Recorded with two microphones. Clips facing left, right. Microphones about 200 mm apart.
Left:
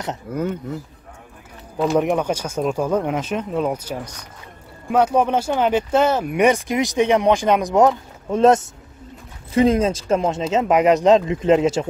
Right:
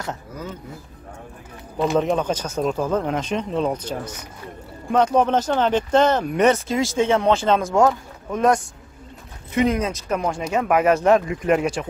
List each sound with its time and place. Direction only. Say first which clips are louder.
0.3 s speech: left 9 dB; 60° left (ahead or behind)
2.0 s speech: left 1 dB; 15° left (ahead or behind)